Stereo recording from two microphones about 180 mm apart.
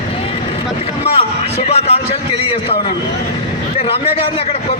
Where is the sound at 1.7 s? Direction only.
35° left (ahead or behind).